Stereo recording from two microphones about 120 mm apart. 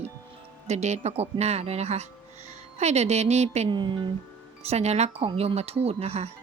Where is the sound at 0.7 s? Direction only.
70° right (ahead or behind).